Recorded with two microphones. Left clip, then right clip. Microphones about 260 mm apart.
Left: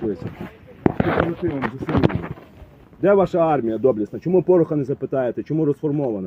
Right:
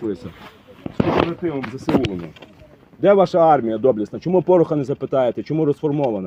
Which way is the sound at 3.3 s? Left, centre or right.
Right.